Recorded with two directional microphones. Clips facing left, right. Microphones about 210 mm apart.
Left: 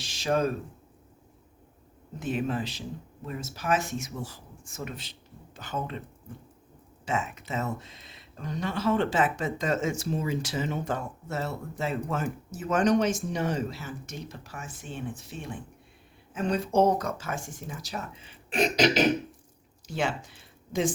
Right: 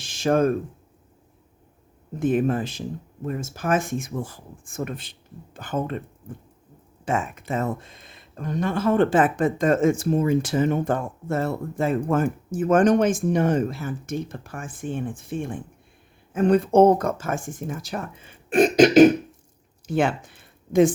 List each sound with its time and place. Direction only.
0.0 s a sound: 50° right (ahead or behind)
2.1 s speech: 50° right (ahead or behind)
7.0 s speech: 50° right (ahead or behind)